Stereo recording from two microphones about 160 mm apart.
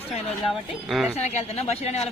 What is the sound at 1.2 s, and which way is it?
Speech, 40° left (ahead or behind).